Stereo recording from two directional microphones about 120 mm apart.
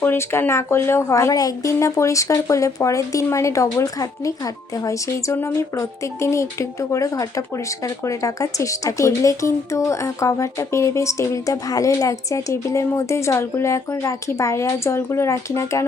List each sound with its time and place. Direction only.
0.0 s speech: 20° left (ahead or behind)